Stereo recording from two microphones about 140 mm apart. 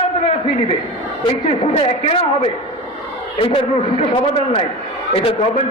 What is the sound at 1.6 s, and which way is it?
A man's voice, 45° left (ahead or behind).